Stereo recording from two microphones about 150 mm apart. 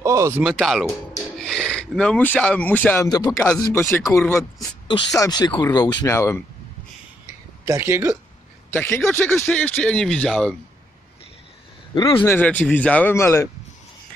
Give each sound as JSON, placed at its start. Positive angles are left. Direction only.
{"t": 0.0, "sound": "speech", "side_deg": -20}
{"t": 0.4, "sound": "speech", "side_deg": 0}
{"t": 3.1, "sound": "speech", "side_deg": 30}
{"t": 7.6, "sound": "speech", "side_deg": -20}
{"t": 9.1, "sound": "speech", "side_deg": 15}
{"t": 11.9, "sound": "speech", "side_deg": 35}
{"t": 12.3, "sound": "speech", "side_deg": 10}